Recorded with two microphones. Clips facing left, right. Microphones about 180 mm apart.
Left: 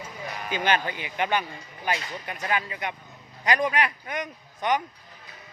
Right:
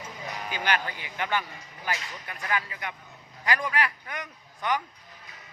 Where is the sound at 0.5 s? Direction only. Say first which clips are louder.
Left 4 dB; 20° left (ahead or behind).